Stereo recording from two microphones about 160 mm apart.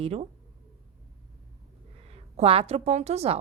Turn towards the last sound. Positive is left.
turn(degrees=-40)  # may be behind; listen again after turning